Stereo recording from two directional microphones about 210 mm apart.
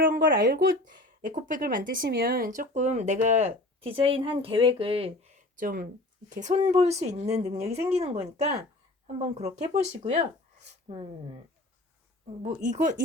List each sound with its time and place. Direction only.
0.0 s speech: 40° right (ahead or behind)
5.5 s speech: 40° right (ahead or behind)
12.4 s speech: 35° right (ahead or behind)